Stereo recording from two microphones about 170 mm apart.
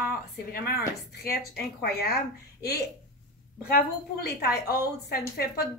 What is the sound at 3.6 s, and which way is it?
A woman's voice, 65° left (ahead or behind).